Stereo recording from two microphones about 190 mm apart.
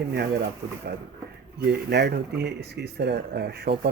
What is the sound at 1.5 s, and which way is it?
Speech, 60° right (ahead or behind).